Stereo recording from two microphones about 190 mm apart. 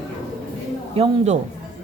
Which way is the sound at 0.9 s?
30° right (ahead or behind).